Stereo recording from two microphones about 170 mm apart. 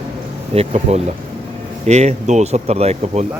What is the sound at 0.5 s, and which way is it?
Speech, 40° right (ahead or behind).